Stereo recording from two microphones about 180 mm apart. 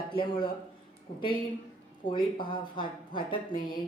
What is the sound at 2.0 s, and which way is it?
Speech, 25° left (ahead or behind).